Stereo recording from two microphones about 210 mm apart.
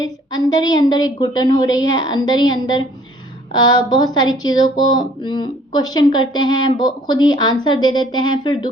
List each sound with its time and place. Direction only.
0.0 s a woman's voice: 15° left (ahead or behind)